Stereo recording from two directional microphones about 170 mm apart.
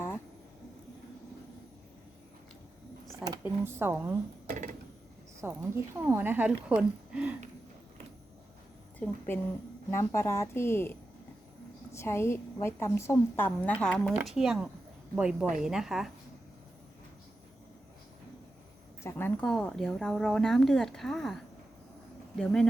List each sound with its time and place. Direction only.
3.4 s a woman's voice: 15° right (ahead or behind)
4.4 s a sound: 45° right (ahead or behind)
5.4 s a woman's voice: 15° right (ahead or behind)
9.0 s a woman's voice: 10° left (ahead or behind)
11.9 s a woman's voice: 15° left (ahead or behind); by 16.0 s centre (ahead or behind)
19.0 s speech: 10° left (ahead or behind)